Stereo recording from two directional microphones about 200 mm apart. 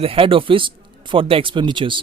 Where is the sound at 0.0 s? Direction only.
25° right (ahead or behind).